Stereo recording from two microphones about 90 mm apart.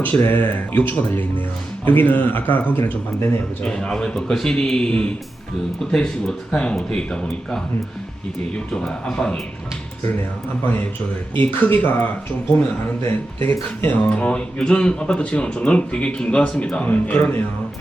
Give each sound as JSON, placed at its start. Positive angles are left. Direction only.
{"t": 0.0, "sound": "speech", "side_deg": 20}
{"t": 3.7, "sound": "speech", "side_deg": 5}
{"t": 8.7, "sound": "speech", "side_deg": 5}
{"t": 11.3, "sound": "speech", "side_deg": 20}